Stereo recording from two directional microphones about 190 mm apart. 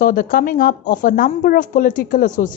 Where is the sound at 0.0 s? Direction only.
45° left (ahead or behind).